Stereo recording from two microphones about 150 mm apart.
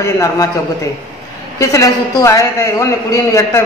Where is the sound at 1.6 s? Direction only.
20° left (ahead or behind).